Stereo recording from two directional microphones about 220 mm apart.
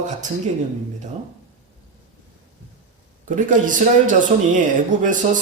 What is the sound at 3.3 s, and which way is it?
Speech, 35° right (ahead or behind).